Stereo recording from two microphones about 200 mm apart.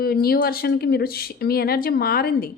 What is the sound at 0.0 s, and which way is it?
Speech, 50° left (ahead or behind).